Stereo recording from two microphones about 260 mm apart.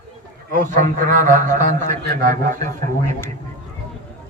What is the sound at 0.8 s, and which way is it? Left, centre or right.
A man's voice, right.